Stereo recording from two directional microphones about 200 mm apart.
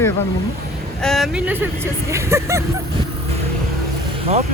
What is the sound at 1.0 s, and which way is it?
Speech, centre (ahead or behind).